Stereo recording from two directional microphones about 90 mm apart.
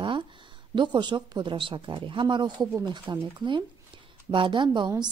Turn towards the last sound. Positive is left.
turn(degrees=-60)  # may be behind; listen again after turning